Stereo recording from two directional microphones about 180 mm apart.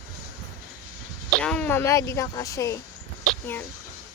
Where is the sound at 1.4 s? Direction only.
5° left (ahead or behind).